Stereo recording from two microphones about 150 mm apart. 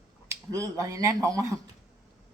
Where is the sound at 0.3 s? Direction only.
20° right (ahead or behind).